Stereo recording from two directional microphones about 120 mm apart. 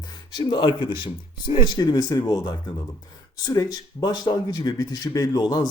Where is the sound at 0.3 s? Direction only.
40° left (ahead or behind).